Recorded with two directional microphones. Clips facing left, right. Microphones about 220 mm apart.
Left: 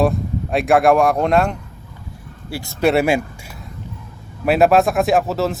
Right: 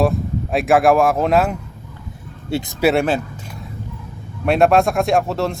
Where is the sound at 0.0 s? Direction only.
Centre (ahead or behind).